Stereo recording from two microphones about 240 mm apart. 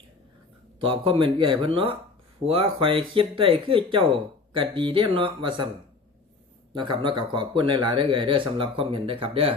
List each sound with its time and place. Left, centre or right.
0.8 s speech: right
6.7 s speech: centre